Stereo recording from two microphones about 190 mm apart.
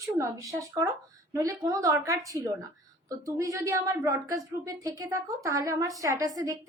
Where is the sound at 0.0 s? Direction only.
15° right (ahead or behind).